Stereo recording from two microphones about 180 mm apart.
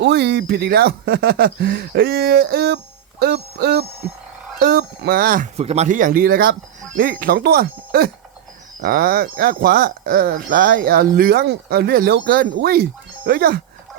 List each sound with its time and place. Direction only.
0.0 s speech: 70° right (ahead or behind); by 5.5 s 50° right (ahead or behind)
5.5 s speech: 35° right (ahead or behind); by 13.6 s 55° right (ahead or behind)